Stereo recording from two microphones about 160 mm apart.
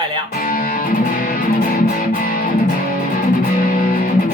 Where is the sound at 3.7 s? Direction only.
60° left (ahead or behind).